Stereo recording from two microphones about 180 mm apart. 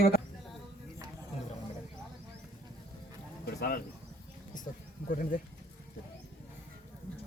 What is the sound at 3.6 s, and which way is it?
Bird, 55° left (ahead or behind).